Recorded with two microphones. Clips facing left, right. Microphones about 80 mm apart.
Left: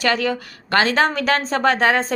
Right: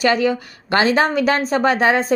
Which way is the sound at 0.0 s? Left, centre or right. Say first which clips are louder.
Right 3 dB; right.